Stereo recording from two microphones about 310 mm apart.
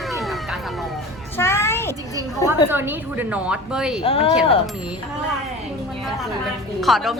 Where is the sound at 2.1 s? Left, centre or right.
Centre.